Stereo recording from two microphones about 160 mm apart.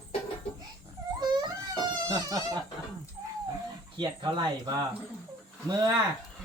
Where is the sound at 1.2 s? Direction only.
25° right (ahead or behind).